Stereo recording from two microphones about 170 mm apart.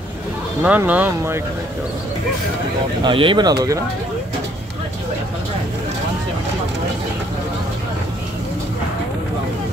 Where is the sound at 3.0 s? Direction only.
30° right (ahead or behind).